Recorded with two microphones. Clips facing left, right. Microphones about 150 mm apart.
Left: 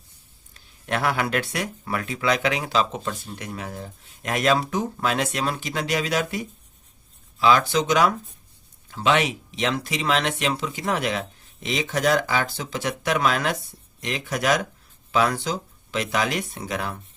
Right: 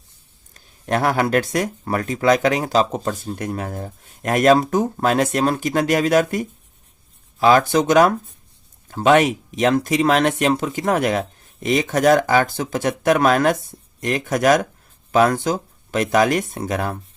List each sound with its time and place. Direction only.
0.5 s speech: 40° right (ahead or behind)